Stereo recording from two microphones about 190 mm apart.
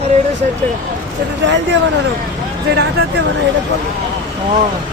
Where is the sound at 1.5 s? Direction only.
70° right (ahead or behind).